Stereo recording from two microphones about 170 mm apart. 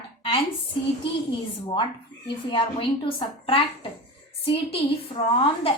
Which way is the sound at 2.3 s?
30° left (ahead or behind).